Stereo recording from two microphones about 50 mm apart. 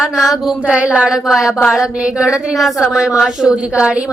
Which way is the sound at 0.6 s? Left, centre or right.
Right.